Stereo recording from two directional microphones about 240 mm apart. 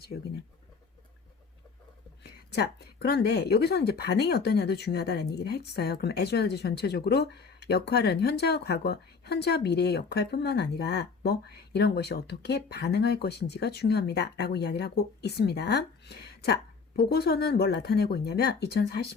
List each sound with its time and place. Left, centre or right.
2.2 s speech: left